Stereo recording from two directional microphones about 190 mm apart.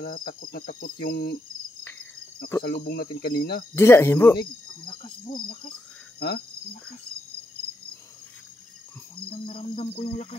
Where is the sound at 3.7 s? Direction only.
15° left (ahead or behind).